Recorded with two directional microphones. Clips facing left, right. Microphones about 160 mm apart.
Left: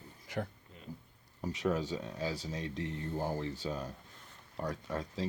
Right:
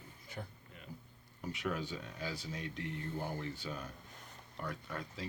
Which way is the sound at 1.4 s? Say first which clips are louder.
Left 6 dB; 35° left (ahead or behind).